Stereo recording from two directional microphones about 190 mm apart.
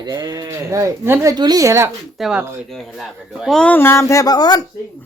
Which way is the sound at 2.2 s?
5° right (ahead or behind).